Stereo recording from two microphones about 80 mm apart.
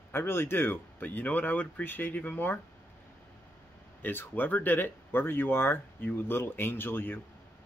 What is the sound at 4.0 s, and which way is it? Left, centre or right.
Speech, left.